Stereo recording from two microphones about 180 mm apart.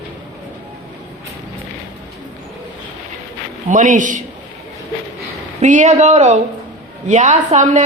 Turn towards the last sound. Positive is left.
turn(degrees=-40)  # may be behind; listen again after turning